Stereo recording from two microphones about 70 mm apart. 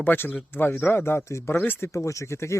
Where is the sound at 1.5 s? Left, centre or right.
Left.